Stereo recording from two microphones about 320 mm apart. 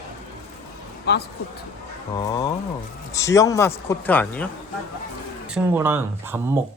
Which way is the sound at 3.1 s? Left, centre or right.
Centre.